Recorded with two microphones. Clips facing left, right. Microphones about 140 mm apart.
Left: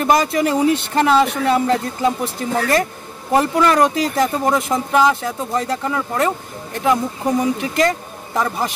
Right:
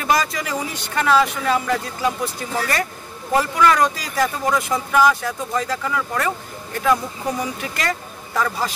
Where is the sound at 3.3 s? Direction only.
30° left (ahead or behind).